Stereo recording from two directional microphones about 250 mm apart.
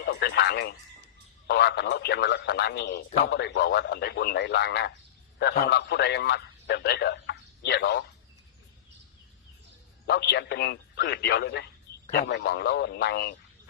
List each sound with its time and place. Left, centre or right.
0.0 s a sound: left
1.5 s a man's voice: left
10.1 s speech: left